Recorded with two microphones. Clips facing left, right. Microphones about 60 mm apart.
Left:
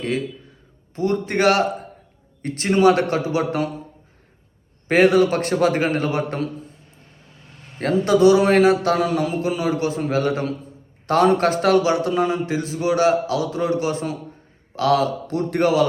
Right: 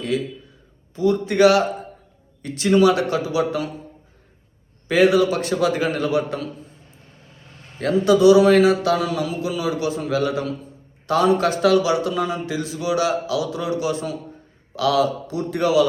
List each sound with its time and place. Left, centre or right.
0.9 s a man's voice: left
4.9 s a man's voice: left
7.8 s a man's voice: left